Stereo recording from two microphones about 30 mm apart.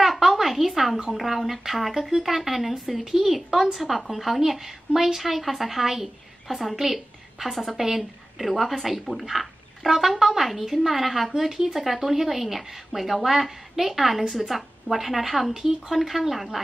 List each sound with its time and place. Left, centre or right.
0.0 s a sound: centre
1.1 s speech: centre
6.8 s a woman's voice: centre
9.3 s speech: centre
15.9 s speech: centre